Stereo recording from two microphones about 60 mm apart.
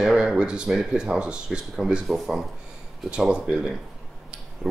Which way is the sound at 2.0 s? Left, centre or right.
Centre.